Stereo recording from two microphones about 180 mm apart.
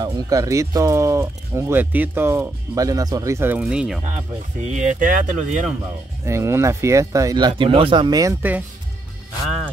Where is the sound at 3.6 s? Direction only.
5° right (ahead or behind).